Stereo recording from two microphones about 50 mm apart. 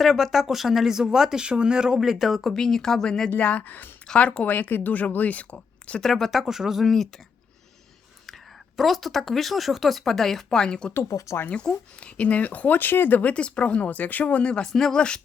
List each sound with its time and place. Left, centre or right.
0.0 s speech: centre
2.0 s speech: centre
3.3 s speech: left
4.0 s speech: centre
4.4 s speech: left
6.0 s speech: centre
6.4 s speech: centre
6.8 s speech: centre
8.3 s speech: centre; by 13.3 s left
13.3 s speech: left
14.6 s speech: centre